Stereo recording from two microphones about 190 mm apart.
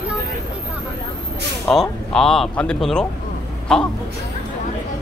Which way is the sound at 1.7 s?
5° left (ahead or behind).